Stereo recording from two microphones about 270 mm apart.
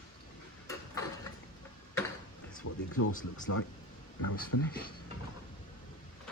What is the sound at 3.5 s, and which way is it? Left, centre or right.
Speech, left.